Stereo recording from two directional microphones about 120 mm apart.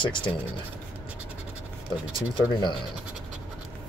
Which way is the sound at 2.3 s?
40° left (ahead or behind).